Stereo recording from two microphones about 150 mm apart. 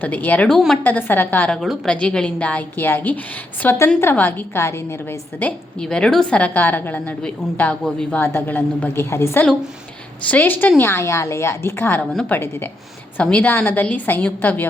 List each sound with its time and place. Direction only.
0.0 s a woman's voice: 10° left (ahead or behind)
0.9 s a woman's voice: 10° left (ahead or behind)
1.6 s a woman's voice: centre (ahead or behind)